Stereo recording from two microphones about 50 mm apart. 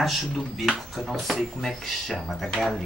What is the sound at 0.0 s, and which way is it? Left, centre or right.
Speech, centre.